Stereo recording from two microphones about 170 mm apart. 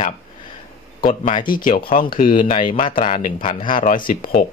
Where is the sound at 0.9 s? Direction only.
55° left (ahead or behind).